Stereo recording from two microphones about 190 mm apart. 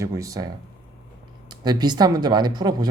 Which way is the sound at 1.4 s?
20° right (ahead or behind).